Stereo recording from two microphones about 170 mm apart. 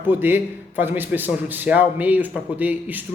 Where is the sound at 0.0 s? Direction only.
10° right (ahead or behind).